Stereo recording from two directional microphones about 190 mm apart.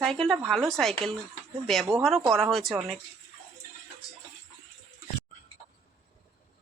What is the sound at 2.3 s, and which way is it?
Speech, centre (ahead or behind).